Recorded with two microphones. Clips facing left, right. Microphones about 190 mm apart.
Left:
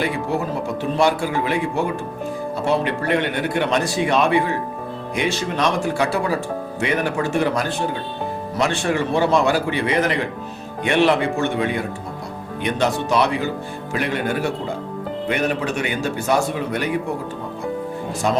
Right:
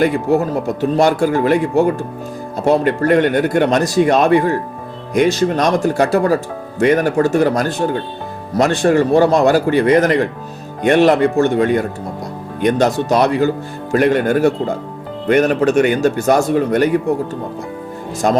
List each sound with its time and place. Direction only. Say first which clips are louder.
0.0 s speech: right 8 dB; 45° right (ahead or behind)
18.2 s speech: right 6 dB; 50° right (ahead or behind)